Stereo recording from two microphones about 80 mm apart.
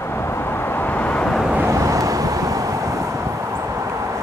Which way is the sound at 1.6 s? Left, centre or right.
Right.